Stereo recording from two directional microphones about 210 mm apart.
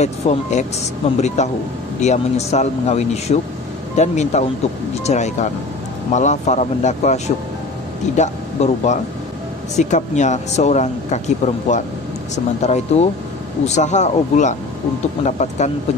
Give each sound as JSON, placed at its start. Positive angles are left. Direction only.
{"t": 0.0, "sound": "speech", "side_deg": 35}